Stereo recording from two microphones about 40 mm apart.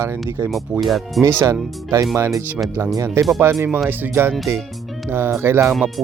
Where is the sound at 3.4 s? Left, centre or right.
Right.